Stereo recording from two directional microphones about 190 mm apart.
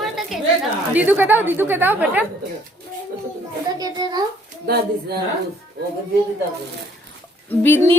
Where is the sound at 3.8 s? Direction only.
20° right (ahead or behind).